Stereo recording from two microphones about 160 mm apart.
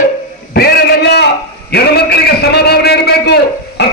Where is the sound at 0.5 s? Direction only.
85° left.